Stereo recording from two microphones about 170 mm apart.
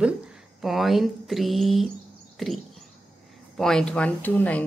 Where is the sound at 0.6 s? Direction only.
Centre (ahead or behind).